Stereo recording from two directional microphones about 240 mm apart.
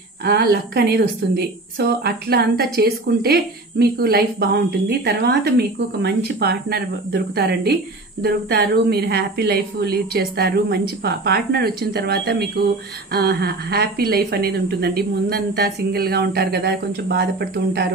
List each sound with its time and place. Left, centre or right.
0.2 s a woman's voice: right